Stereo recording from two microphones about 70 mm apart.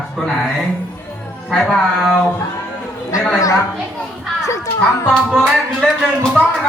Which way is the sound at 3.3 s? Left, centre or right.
Left.